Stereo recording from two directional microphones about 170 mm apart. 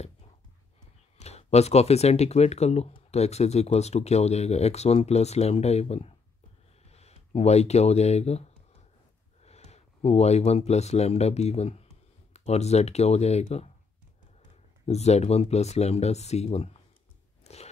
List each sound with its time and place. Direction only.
1.1 s speech: 40° left (ahead or behind)
14.9 s speech: 40° left (ahead or behind)
17.4 s chewing: 40° left (ahead or behind)